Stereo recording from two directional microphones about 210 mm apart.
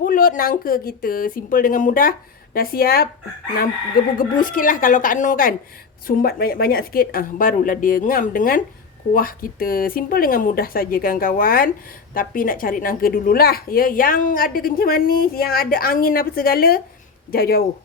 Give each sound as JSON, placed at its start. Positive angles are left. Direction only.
{"t": 0.0, "sound": "a woman's voice", "side_deg": 40}
{"t": 4.2, "sound": "a woman's voice", "side_deg": 40}